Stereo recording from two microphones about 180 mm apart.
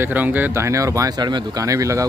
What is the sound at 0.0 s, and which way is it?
Speech, 10° right (ahead or behind).